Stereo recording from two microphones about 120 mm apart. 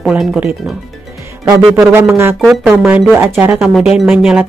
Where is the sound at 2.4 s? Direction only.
Centre (ahead or behind).